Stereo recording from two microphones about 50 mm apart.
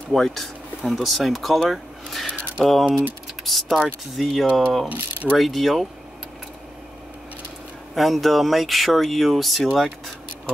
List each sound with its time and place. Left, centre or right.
0.1 s speech: centre
4.8 s speech: right
5.4 s speech: centre
7.9 s speech: centre